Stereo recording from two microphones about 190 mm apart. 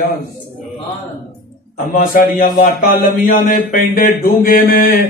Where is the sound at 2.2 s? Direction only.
50° left (ahead or behind).